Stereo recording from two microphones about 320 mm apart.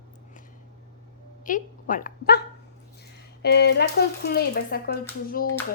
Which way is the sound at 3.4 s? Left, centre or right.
Left.